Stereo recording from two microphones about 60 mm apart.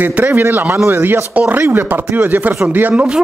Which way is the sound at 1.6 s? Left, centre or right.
Right.